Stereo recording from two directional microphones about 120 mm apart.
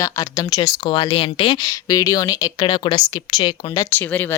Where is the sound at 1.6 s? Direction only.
30° left (ahead or behind).